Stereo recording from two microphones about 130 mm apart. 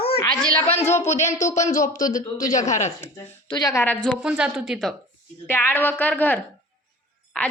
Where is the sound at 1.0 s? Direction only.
65° left (ahead or behind).